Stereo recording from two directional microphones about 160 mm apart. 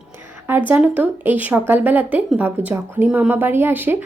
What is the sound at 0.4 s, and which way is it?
A woman's voice, 10° right (ahead or behind).